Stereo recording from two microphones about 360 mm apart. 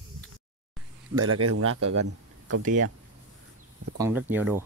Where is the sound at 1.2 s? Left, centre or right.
Right.